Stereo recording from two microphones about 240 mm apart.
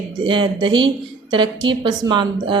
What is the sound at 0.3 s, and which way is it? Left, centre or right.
Speech, centre.